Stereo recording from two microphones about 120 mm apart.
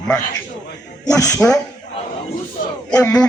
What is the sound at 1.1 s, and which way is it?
Speech, 25° left (ahead or behind).